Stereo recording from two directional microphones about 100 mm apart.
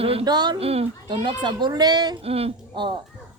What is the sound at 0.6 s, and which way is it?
Speech, 80° right.